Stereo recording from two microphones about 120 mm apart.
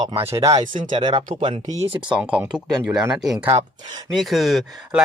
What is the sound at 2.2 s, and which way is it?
Speech, 10° right (ahead or behind).